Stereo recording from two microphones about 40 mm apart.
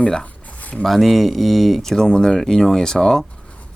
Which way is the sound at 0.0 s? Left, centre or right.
Left.